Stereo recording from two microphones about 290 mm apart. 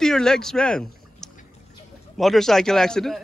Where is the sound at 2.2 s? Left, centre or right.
Centre.